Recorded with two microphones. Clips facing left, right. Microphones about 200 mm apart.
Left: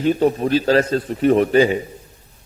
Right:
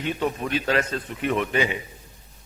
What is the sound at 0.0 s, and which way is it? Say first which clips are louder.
A man's voice: left 9 dB; 35° left (ahead or behind).